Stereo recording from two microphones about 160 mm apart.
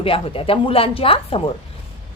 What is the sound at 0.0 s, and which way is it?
A woman's voice, 35° left (ahead or behind).